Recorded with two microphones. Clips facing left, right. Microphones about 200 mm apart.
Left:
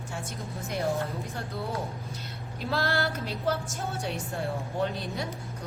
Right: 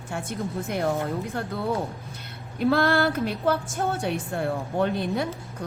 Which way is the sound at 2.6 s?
55° right (ahead or behind).